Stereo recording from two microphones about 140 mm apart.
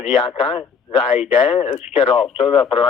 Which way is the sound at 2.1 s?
5° right (ahead or behind).